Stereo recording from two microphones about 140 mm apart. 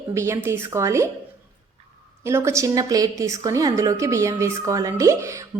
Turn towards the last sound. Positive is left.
turn(degrees=-20)  # may be behind; listen again after turning